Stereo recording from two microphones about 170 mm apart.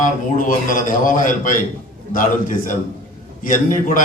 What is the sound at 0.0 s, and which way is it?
A man's voice, 50° left (ahead or behind).